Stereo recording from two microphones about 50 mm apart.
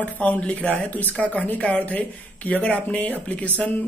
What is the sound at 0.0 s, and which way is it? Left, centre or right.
Speech, left.